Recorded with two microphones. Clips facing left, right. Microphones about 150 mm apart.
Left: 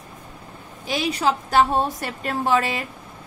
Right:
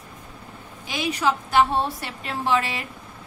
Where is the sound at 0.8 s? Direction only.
35° left (ahead or behind).